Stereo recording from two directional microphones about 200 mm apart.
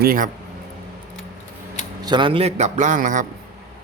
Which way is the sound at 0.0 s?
45° right (ahead or behind).